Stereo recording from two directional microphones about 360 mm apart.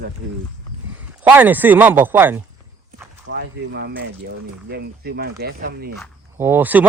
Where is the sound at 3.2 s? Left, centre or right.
Right.